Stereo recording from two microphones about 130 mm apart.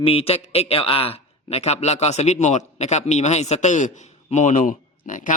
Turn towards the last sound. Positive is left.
turn(degrees=90)